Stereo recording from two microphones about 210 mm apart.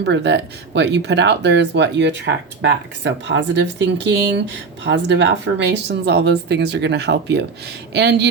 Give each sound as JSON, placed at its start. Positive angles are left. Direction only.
{"t": 0.0, "sound": "speech", "side_deg": -55}